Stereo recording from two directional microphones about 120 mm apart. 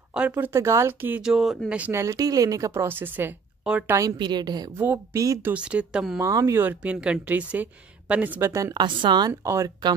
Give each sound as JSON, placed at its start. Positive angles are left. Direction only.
{"t": 0.4, "sound": "speech", "side_deg": -20}
{"t": 1.2, "sound": "speech", "side_deg": 0}
{"t": 1.8, "sound": "speech", "side_deg": -20}
{"t": 4.2, "sound": "a woman's voice", "side_deg": -35}
{"t": 4.7, "sound": "speech", "side_deg": -20}
{"t": 5.5, "sound": "speech", "side_deg": -10}
{"t": 6.1, "sound": "speech", "side_deg": -25}
{"t": 6.6, "sound": "speech", "side_deg": -10}
{"t": 8.7, "sound": "a woman's voice", "side_deg": -40}
{"t": 9.3, "sound": "speech", "side_deg": -25}